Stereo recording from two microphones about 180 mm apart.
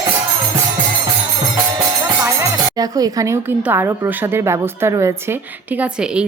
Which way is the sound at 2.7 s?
20° right (ahead or behind).